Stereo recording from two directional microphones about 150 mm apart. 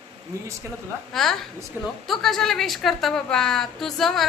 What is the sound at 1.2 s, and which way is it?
A woman's voice, centre (ahead or behind).